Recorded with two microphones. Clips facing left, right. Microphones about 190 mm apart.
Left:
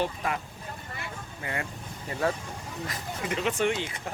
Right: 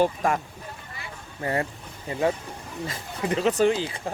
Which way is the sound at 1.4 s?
35° right (ahead or behind).